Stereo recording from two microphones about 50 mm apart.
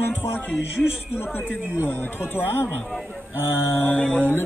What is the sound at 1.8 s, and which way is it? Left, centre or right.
Speech, left.